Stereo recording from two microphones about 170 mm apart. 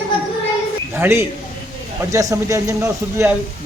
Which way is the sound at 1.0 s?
15° right (ahead or behind).